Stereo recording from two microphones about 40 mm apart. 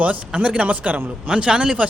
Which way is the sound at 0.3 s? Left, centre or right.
Right.